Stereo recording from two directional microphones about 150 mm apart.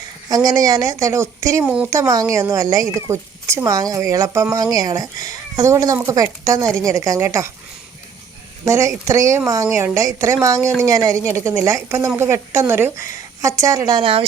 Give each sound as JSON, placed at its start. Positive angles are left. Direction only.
{"t": 0.3, "sound": "speech", "side_deg": -25}
{"t": 1.6, "sound": "speech", "side_deg": -10}
{"t": 1.9, "sound": "speech", "side_deg": -20}
{"t": 8.6, "sound": "speech", "side_deg": -20}